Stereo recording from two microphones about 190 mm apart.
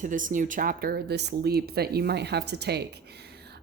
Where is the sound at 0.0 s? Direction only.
45° right (ahead or behind).